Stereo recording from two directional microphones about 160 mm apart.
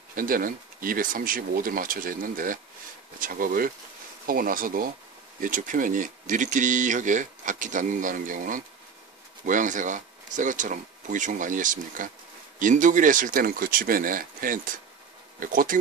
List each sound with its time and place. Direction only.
0.1 s speech: 60° right (ahead or behind)